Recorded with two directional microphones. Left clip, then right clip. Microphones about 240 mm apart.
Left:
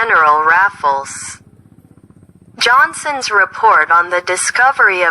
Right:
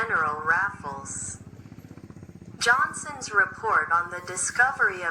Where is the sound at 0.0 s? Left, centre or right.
Left.